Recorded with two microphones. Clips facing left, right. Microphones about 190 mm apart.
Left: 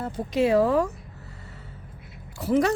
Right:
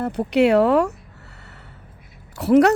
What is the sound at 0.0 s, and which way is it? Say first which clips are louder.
Speech: right 6 dB; 70° right (ahead or behind).